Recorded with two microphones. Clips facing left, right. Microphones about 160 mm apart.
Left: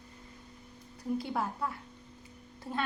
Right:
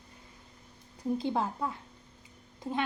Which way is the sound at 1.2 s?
20° right (ahead or behind).